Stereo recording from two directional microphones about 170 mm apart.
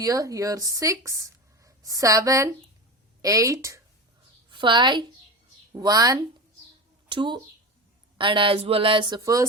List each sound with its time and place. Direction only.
0.0 s a woman's voice: 20° right (ahead or behind)